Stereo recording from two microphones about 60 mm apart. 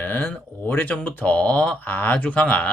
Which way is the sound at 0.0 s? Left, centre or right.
Left.